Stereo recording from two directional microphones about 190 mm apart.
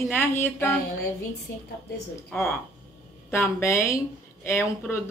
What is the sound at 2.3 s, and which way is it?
A woman's voice, 10° left (ahead or behind).